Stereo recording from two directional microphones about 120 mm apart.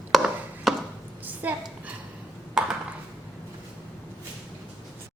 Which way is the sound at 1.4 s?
15° right (ahead or behind).